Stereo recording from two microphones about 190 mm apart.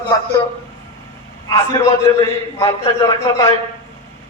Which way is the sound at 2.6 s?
25° left (ahead or behind).